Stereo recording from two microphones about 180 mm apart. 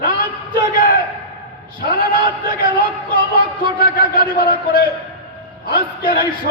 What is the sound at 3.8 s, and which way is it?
A man's voice, 55° left (ahead or behind).